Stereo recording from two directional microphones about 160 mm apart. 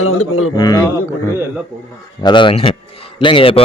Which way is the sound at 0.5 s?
25° left (ahead or behind).